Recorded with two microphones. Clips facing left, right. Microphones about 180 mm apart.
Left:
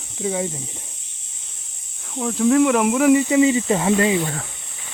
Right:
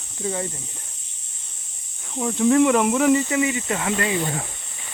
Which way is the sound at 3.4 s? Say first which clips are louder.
Left 7 dB; 25° left (ahead or behind).